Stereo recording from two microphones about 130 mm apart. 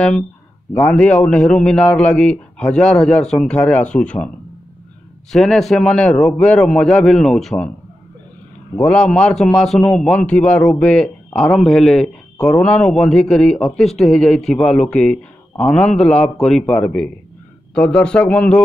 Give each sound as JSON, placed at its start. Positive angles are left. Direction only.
{"t": 0.7, "sound": "a man's voice", "side_deg": 10}
{"t": 5.3, "sound": "speech", "side_deg": 5}
{"t": 8.8, "sound": "a man's voice", "side_deg": 5}